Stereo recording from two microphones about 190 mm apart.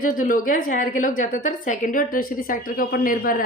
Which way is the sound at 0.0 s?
45° left (ahead or behind).